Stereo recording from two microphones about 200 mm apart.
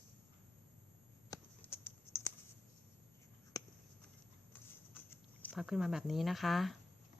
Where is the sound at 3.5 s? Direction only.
20° left (ahead or behind).